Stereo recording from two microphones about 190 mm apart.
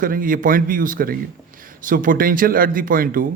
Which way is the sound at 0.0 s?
45° right (ahead or behind).